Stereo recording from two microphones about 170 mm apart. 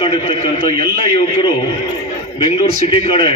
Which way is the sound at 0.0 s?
30° left (ahead or behind).